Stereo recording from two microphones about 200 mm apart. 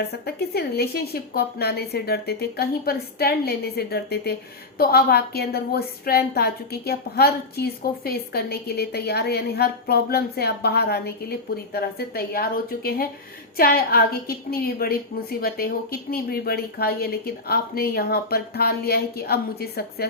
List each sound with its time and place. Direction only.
0.0 s a woman's voice: 55° left (ahead or behind)